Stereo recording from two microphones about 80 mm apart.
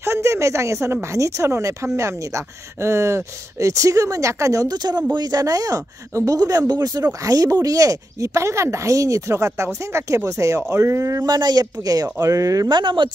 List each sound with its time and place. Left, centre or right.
0.0 s a sound: right
1.1 s speech: right
11.2 s speech: right
12.6 s speech: right